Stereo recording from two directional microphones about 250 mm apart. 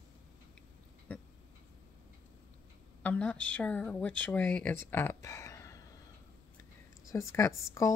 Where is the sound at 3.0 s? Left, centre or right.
Centre.